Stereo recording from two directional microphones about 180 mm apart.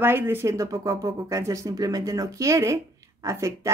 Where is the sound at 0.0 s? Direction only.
10° right (ahead or behind).